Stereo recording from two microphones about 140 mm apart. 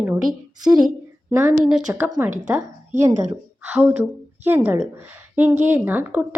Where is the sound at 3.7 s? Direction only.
10° right (ahead or behind).